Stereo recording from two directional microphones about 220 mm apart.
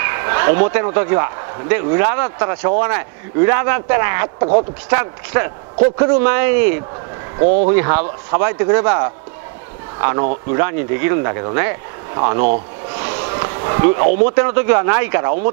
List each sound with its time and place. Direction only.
0.0 s a man's voice: 15° right (ahead or behind)
7.4 s speech: 40° right (ahead or behind)
7.7 s a man's voice: 15° right (ahead or behind)